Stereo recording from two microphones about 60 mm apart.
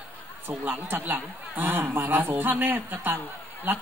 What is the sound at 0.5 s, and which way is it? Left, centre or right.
Speech, right.